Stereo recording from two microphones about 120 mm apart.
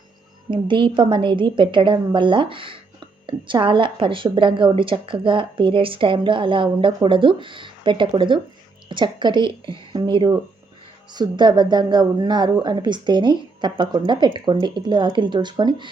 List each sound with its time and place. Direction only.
0.5 s a woman's voice: 45° right (ahead or behind)